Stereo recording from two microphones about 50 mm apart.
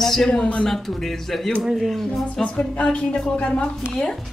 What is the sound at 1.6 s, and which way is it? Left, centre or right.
Speech, centre.